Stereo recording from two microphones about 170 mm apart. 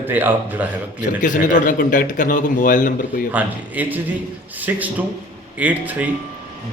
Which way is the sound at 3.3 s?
10° right (ahead or behind).